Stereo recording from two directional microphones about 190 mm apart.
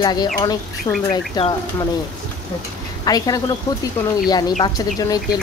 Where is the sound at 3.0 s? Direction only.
20° left (ahead or behind).